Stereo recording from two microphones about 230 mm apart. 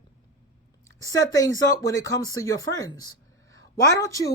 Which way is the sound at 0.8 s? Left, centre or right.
Centre.